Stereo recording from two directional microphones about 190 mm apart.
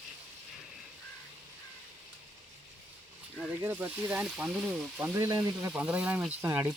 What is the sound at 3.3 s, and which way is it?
Speech, 10° right (ahead or behind).